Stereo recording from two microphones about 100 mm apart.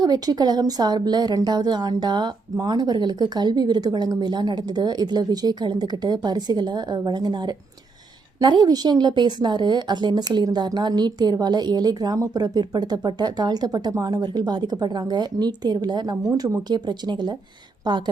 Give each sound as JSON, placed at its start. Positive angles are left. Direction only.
{"t": 0.0, "sound": "a woman's voice", "side_deg": -40}
{"t": 16.3, "sound": "speech", "side_deg": -30}
{"t": 16.6, "sound": "a woman's voice", "side_deg": -45}